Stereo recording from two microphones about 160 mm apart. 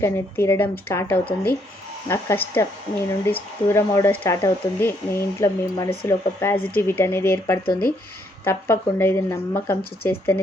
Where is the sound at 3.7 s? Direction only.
20° left (ahead or behind).